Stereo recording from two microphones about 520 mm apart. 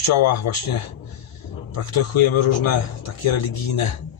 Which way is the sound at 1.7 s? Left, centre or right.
Left.